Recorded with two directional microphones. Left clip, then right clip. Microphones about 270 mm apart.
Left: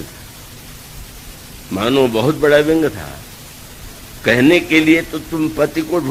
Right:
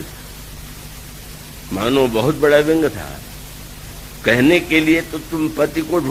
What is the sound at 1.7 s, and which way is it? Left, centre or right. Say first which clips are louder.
A man's voice: left 2 dB; right.